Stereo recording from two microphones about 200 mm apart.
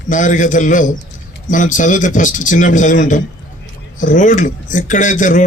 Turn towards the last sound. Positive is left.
turn(degrees=40)  # may be behind; listen again after turning